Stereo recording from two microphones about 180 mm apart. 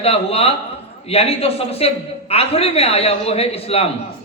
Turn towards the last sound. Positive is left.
turn(degrees=35)  # may be behind; listen again after turning